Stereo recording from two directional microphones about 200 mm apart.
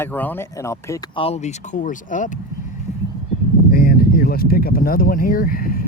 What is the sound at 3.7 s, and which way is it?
Speech, 50° left (ahead or behind).